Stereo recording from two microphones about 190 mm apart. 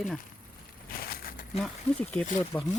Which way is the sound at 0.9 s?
50° left (ahead or behind).